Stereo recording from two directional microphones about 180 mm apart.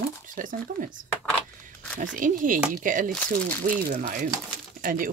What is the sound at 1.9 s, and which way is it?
Speech, 45° right (ahead or behind).